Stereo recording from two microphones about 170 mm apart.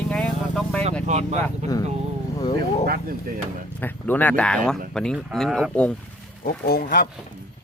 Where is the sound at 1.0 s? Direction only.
40° right (ahead or behind).